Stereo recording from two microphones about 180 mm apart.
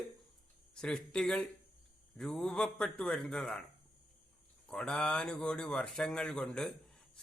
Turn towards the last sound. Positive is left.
turn(degrees=5)  # may be behind; listen again after turning